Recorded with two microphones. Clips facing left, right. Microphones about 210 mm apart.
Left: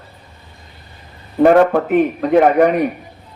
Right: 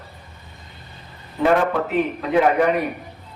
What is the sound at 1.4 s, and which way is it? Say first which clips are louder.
A man's voice: left 7 dB; 50° left (ahead or behind).